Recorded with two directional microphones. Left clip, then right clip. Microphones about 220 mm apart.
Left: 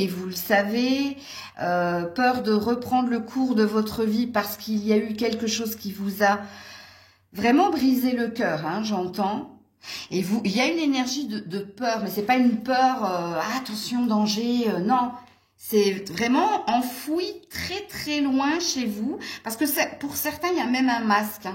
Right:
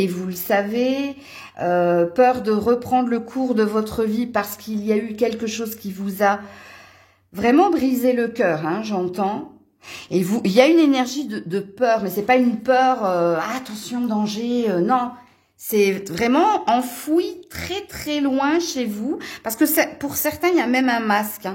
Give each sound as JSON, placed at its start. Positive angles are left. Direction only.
{"t": 0.0, "sound": "a woman's voice", "side_deg": -30}
{"t": 13.8, "sound": "a sound", "side_deg": -25}
{"t": 15.7, "sound": "a woman's voice", "side_deg": -45}